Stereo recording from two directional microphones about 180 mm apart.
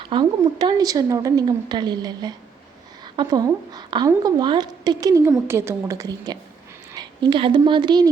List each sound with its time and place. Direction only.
0.0 s a woman's voice: 25° right (ahead or behind)